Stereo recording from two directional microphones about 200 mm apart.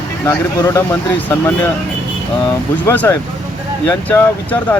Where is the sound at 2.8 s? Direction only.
10° left (ahead or behind).